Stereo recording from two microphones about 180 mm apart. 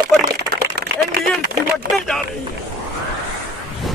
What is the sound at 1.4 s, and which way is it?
Speech, 60° right (ahead or behind).